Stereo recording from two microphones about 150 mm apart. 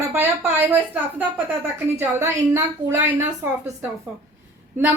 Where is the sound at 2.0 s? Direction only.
15° right (ahead or behind).